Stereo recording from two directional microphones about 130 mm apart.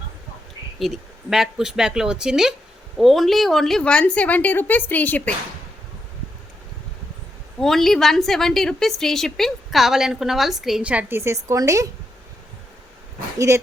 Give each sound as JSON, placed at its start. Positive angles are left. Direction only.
{"t": 0.8, "sound": "a woman's voice", "side_deg": 0}
{"t": 7.6, "sound": "a woman's voice", "side_deg": 5}
{"t": 13.5, "sound": "speech", "side_deg": -25}